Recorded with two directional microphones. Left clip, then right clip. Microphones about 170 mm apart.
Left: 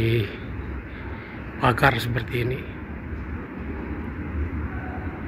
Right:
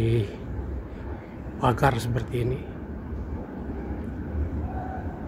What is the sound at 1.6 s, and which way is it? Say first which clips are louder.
A man's voice: left 3 dB; 10° right (ahead or behind).